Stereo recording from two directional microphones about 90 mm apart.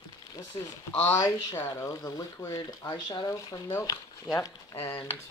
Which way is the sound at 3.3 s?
35° left (ahead or behind).